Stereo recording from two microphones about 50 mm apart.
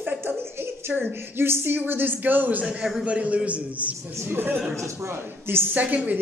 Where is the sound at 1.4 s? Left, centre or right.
Right.